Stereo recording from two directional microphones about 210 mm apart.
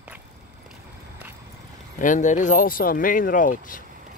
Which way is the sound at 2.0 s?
35° left (ahead or behind).